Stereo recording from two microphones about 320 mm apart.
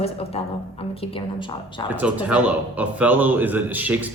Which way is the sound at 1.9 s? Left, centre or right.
Centre.